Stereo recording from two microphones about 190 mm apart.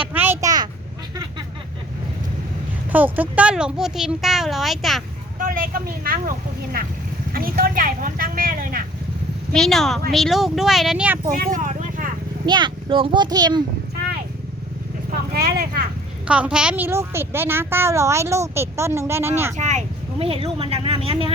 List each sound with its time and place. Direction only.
0.0 s a sound: 10° right (ahead or behind)
1.1 s vehicle: 20° right (ahead or behind)
2.9 s speech: 10° right (ahead or behind)
5.4 s speech: 45° right (ahead or behind)
7.3 s speech: 50° right (ahead or behind)
9.5 s speech: 5° left (ahead or behind)
11.3 s vehicle: 45° right (ahead or behind)
12.5 s speech: 25° right (ahead or behind)
15.1 s speech: 55° right (ahead or behind)
16.2 s a woman's voice: 5° right (ahead or behind)
19.5 s speech: 40° right (ahead or behind)